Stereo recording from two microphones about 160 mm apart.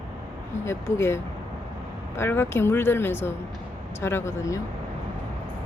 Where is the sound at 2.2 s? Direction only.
15° left (ahead or behind).